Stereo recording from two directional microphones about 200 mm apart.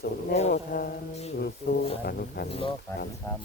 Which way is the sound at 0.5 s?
50° left (ahead or behind).